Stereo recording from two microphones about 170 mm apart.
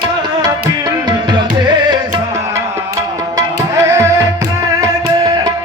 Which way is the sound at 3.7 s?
20° right (ahead or behind).